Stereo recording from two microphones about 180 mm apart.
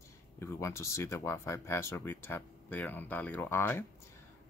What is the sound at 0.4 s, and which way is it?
Speech, 15° left (ahead or behind).